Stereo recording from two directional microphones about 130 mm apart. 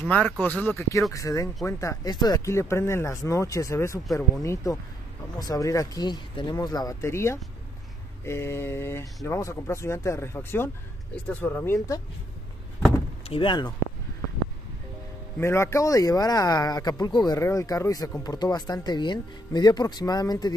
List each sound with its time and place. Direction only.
0.1 s speech: 10° left (ahead or behind)
13.3 s speech: 40° left (ahead or behind)
15.3 s speech: 20° left (ahead or behind)